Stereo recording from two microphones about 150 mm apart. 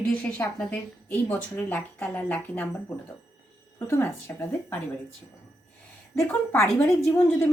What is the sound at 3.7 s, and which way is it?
A woman's voice, 15° left (ahead or behind).